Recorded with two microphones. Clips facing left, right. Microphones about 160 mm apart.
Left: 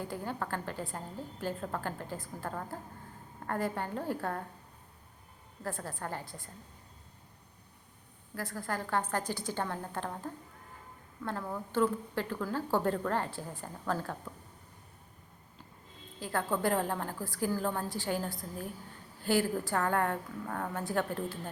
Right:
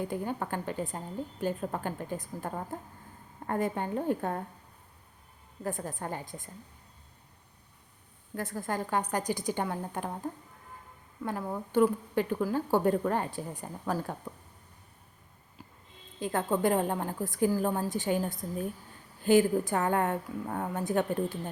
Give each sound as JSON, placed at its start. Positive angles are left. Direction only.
{"t": 0.0, "sound": "a woman's voice", "side_deg": -20}
{"t": 5.6, "sound": "a woman's voice", "side_deg": -20}
{"t": 8.4, "sound": "a woman's voice", "side_deg": -20}
{"t": 11.2, "sound": "a woman's voice", "side_deg": -15}
{"t": 16.2, "sound": "a woman's voice", "side_deg": -20}